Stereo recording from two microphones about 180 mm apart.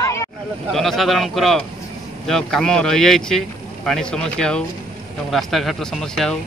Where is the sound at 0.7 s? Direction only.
Centre (ahead or behind).